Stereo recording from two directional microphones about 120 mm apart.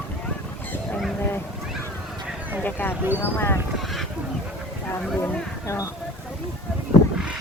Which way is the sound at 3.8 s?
Centre (ahead or behind).